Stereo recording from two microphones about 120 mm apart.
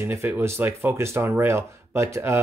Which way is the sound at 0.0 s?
20° right (ahead or behind).